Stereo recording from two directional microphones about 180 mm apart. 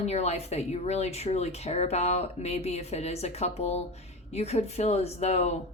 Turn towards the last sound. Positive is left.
turn(degrees=35)  # may be behind; listen again after turning